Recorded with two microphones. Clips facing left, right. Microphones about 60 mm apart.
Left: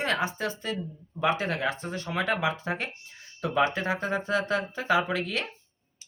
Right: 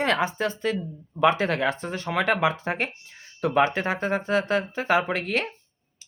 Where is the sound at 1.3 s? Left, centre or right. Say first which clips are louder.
Right 4 dB; right.